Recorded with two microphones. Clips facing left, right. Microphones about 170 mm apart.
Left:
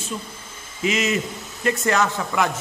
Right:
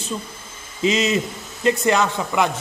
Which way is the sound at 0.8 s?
25° right (ahead or behind).